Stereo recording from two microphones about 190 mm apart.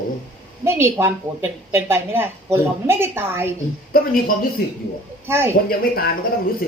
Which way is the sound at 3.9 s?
50° left (ahead or behind).